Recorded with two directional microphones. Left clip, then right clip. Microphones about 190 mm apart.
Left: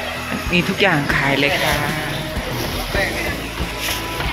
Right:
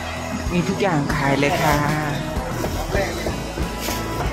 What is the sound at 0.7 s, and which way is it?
Speech, 5° right (ahead or behind).